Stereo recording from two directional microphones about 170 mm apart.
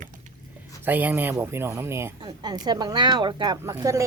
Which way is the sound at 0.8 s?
10° right (ahead or behind).